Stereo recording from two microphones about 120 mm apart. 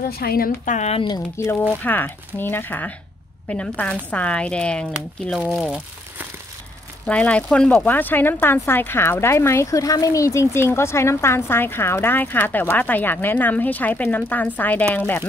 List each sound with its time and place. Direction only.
0.7 s speech: 80° left
0.9 s speech: 40° left (ahead or behind)
1.7 s speech: 15° left (ahead or behind)
5.5 s speech: 5° right (ahead or behind)
7.1 s speech: 10° left (ahead or behind)